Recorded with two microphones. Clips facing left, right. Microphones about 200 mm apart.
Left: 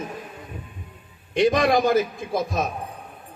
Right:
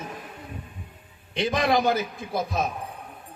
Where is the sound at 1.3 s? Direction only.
50° left (ahead or behind).